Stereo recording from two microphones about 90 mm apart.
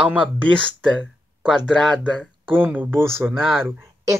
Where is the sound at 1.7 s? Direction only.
10° left (ahead or behind).